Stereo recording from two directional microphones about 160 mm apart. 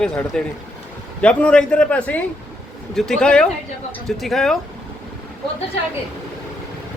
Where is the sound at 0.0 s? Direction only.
5° left (ahead or behind).